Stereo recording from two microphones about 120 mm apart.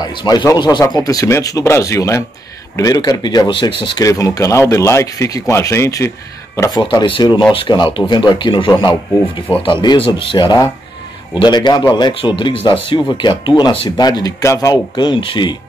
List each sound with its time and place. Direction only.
0.0 s speech: 40° left (ahead or behind)
4.1 s speech: 25° left (ahead or behind)
6.8 s speech: 40° left (ahead or behind)
15.0 s speech: 40° left (ahead or behind)